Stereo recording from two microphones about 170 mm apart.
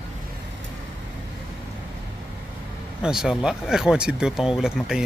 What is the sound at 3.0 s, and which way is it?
Speech, 5° right (ahead or behind).